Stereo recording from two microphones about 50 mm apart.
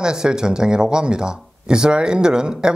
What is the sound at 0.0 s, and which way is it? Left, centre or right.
Speech, centre.